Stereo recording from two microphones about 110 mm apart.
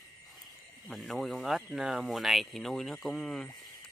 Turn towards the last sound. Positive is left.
turn(degrees=0)  # may be behind; listen again after turning